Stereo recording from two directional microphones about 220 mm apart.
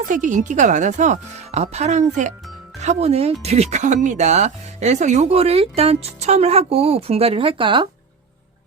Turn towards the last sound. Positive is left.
turn(degrees=-20)  # may be behind; listen again after turning